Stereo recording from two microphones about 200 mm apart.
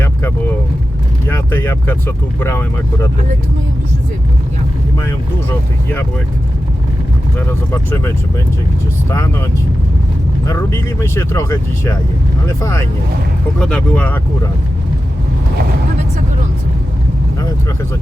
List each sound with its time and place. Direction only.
0.0 s vehicle: 10° left (ahead or behind)
1.3 s speech: 10° left (ahead or behind)
7.3 s speech: 10° left (ahead or behind)